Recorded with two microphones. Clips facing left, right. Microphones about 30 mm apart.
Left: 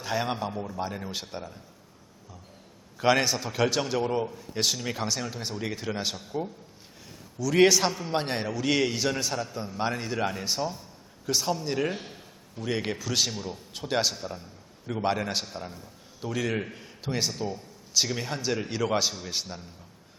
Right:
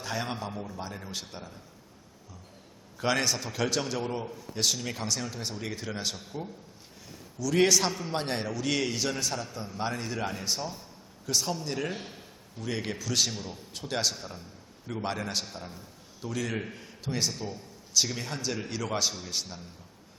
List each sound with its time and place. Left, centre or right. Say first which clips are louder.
0.0 s a man's voice: left 4 dB; centre
3.0 s a man's voice: left 4 dB; centre
7.3 s a man's voice: left 3 dB; centre
12.6 s a man's voice: left 3 dB; centre